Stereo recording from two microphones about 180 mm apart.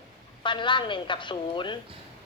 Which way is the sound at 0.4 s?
25° left (ahead or behind).